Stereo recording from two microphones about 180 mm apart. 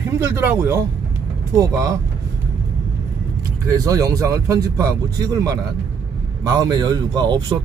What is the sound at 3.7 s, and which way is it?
Speech, 20° right (ahead or behind).